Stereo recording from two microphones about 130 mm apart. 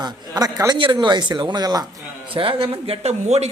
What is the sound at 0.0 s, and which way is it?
Speech, 30° right (ahead or behind).